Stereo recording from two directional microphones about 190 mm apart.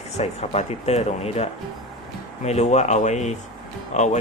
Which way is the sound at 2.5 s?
35° left (ahead or behind).